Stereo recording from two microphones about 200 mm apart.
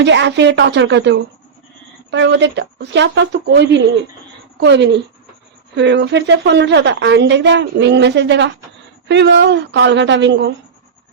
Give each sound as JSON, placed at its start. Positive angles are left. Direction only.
{"t": 0.0, "sound": "a woman's voice", "side_deg": -60}